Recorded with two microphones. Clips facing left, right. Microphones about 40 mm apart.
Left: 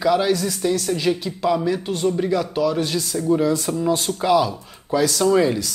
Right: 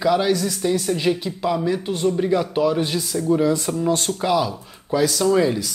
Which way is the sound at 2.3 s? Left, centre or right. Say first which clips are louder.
Right 1 dB; centre.